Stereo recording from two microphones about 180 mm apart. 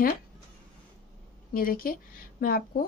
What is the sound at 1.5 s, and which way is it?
A woman's voice, 50° left (ahead or behind).